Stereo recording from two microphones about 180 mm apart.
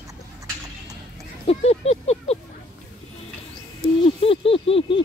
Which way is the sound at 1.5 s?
35° left (ahead or behind).